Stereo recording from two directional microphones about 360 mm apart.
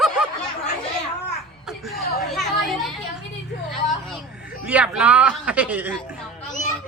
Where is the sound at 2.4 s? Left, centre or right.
Centre.